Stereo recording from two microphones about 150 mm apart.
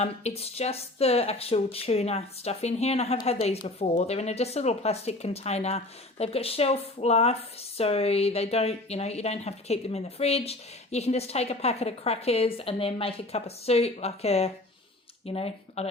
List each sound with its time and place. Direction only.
0.0 s speech: 45° left (ahead or behind)